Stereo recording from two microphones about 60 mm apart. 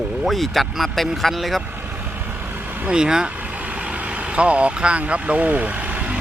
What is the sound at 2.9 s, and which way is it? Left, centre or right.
Speech, centre.